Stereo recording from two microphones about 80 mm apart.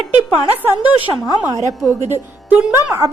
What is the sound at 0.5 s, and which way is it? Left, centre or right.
Speech, right.